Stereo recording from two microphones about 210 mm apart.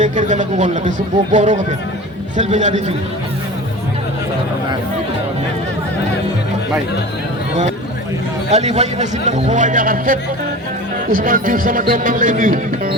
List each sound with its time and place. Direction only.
0.0 s speech: 35° right (ahead or behind)
8.4 s speech: 30° right (ahead or behind)